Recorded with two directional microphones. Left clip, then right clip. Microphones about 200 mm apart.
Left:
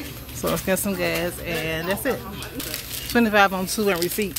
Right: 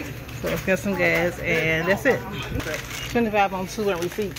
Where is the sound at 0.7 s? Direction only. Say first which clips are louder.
Right 6 dB; 20° left (ahead or behind).